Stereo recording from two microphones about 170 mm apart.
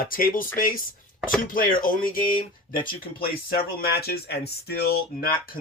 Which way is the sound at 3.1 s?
60° left (ahead or behind).